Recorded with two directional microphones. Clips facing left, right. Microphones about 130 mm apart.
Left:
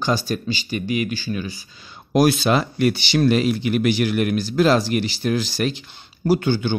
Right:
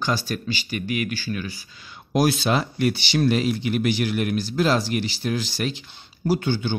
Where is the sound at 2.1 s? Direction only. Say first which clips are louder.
Left 4 dB; 65° left (ahead or behind).